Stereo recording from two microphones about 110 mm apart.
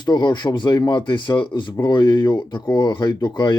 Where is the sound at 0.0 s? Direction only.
40° left (ahead or behind).